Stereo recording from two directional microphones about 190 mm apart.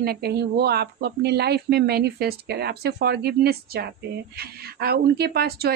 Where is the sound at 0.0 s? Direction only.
55° right (ahead or behind).